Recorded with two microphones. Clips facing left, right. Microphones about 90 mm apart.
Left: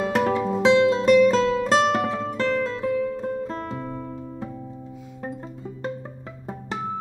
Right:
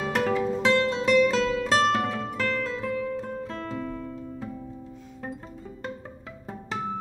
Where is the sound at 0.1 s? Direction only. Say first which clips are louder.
Even; 5° left (ahead or behind).